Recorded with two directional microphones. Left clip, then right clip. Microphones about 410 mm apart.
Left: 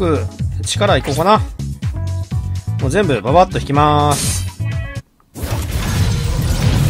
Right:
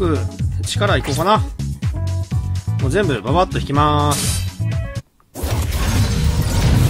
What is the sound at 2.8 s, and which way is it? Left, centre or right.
Speech, centre.